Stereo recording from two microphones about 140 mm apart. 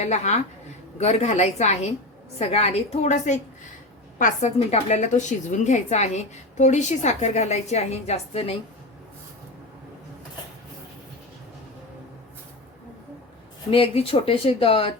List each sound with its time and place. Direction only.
0.0 s a woman's voice: 55° left (ahead or behind)
13.7 s speech: 40° left (ahead or behind)